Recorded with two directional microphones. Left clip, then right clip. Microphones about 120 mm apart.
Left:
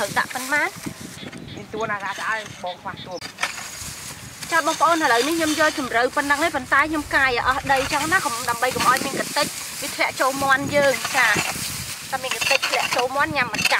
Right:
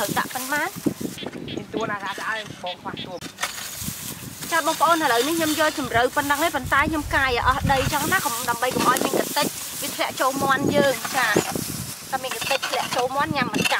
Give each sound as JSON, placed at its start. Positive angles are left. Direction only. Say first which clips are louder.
{"t": 0.0, "sound": "speech", "louder": "left 2 dB", "side_deg": -5}
{"t": 1.8, "sound": "speech", "louder": "left 2 dB", "side_deg": -15}
{"t": 4.6, "sound": "speech", "louder": "left 1 dB", "side_deg": 0}